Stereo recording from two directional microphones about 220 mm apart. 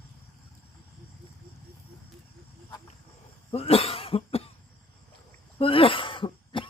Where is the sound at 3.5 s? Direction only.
25° left (ahead or behind).